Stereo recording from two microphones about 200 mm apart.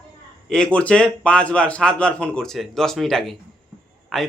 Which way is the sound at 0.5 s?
5° left (ahead or behind).